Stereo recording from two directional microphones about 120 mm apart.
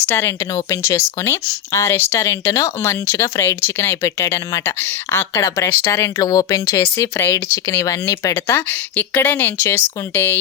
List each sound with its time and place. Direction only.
0.0 s speech: 20° left (ahead or behind)